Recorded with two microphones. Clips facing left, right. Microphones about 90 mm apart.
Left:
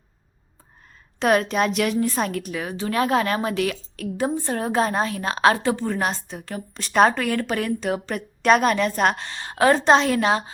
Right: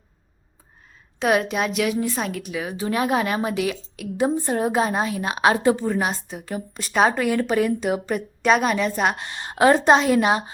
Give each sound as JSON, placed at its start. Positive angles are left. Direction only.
{"t": 1.2, "sound": "a woman's voice", "side_deg": -5}
{"t": 2.8, "sound": "a woman's voice", "side_deg": -20}
{"t": 5.8, "sound": "a woman's voice", "side_deg": -5}
{"t": 9.1, "sound": "a woman's voice", "side_deg": -20}
{"t": 9.7, "sound": "a woman's voice", "side_deg": -10}